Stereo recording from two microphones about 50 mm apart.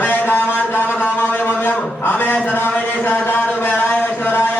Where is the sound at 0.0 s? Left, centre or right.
Left.